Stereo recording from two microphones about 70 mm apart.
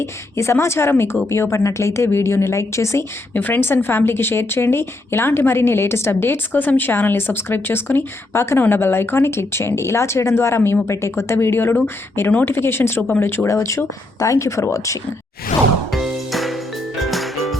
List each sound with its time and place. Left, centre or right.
0.0 s a woman's voice: left
3.3 s a woman's voice: left
12.3 s speech: left
12.5 s a woman's voice: left
13.0 s speech: centre
13.2 s speech: left
15.9 s music: centre